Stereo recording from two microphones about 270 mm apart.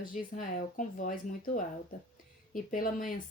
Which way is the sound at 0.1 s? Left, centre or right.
Left.